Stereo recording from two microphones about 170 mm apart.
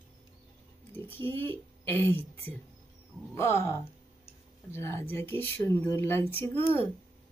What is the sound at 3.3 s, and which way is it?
Speech, 15° left (ahead or behind).